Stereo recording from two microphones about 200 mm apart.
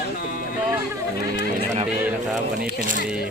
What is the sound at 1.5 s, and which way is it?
Speech, 35° right (ahead or behind).